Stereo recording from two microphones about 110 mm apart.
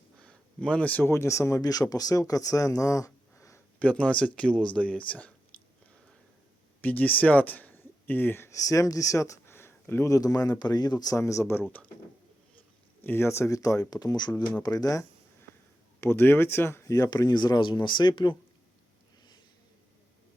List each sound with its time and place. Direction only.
0.2 s a sound: 10° left (ahead or behind)
1.1 s speech: 25° left (ahead or behind)
3.8 s speech: 10° left (ahead or behind)
6.8 s speech: 15° left (ahead or behind)
13.0 s speech: 20° left (ahead or behind)
16.0 s speech: 20° left (ahead or behind); by 18.3 s 45° left (ahead or behind)